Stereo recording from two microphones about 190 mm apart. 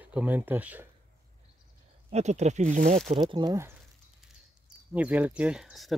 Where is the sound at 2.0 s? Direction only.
35° right (ahead or behind).